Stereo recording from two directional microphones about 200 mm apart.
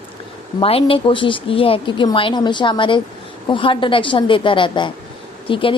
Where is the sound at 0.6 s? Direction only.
25° left (ahead or behind).